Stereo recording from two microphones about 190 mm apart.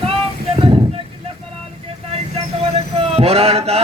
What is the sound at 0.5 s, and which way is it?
Vehicle, 25° right (ahead or behind).